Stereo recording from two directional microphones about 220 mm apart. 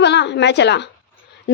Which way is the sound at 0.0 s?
50° left (ahead or behind).